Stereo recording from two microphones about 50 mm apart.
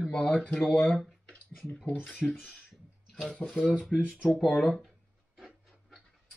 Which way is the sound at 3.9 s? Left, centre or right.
Centre.